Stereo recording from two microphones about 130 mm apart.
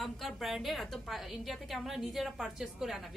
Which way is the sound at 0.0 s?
Centre (ahead or behind).